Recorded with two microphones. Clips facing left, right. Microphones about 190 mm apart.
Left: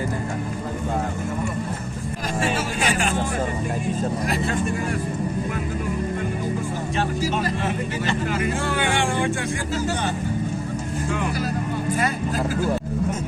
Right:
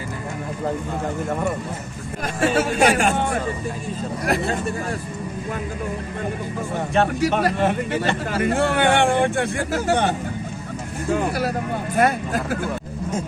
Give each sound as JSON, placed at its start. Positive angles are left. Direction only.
{"t": 2.4, "sound": "speech", "side_deg": -65}
{"t": 6.9, "sound": "speech", "side_deg": -65}
{"t": 11.9, "sound": "speech", "side_deg": -60}